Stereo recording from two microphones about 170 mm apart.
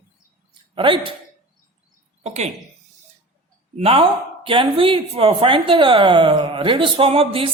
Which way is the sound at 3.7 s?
35° right (ahead or behind).